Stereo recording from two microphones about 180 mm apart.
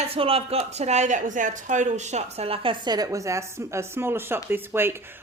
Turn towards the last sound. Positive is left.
turn(degrees=-15)  # may be behind; listen again after turning